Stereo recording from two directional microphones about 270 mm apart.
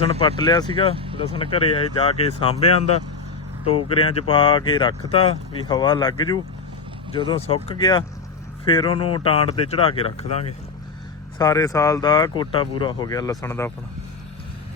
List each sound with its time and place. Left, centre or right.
0.0 s speech: left